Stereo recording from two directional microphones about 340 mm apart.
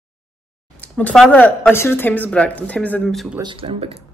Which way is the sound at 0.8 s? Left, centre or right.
Centre.